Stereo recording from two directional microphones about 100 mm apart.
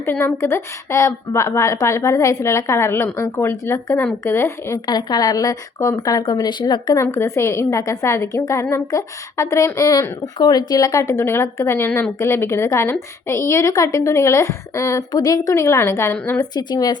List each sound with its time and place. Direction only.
0.0 s a woman's voice: 25° left (ahead or behind)
4.9 s speech: 40° left (ahead or behind)
6.9 s a woman's voice: 30° left (ahead or behind)
16.4 s speech: 40° left (ahead or behind)